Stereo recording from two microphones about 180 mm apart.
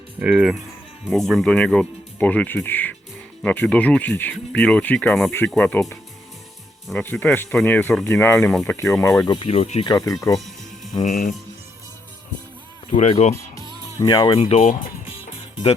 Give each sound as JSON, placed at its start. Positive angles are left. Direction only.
{"t": 0.2, "sound": "speech", "side_deg": -5}
{"t": 9.2, "sound": "speech", "side_deg": 30}
{"t": 9.9, "sound": "speech", "side_deg": 20}
{"t": 11.0, "sound": "speech", "side_deg": 45}
{"t": 12.9, "sound": "speech", "side_deg": 40}
{"t": 14.0, "sound": "speech", "side_deg": 20}
{"t": 14.3, "sound": "speech", "side_deg": 35}